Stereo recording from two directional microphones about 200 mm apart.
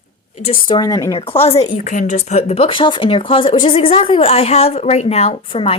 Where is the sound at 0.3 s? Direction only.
30° left (ahead or behind).